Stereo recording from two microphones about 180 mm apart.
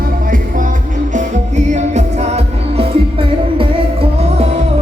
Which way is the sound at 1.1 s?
40° right (ahead or behind).